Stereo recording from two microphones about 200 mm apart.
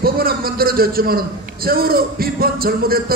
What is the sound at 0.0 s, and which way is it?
A man's voice, 50° right (ahead or behind).